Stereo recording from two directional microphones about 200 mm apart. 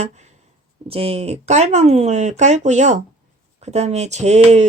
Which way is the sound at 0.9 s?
30° right (ahead or behind).